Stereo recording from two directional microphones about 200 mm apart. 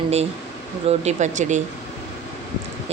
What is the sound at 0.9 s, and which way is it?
Speech, 35° right (ahead or behind).